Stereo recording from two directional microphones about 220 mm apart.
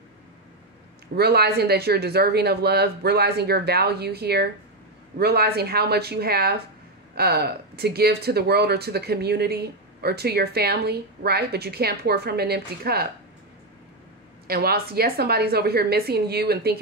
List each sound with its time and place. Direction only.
1.1 s speech: 45° right (ahead or behind)
14.5 s speech: 45° right (ahead or behind)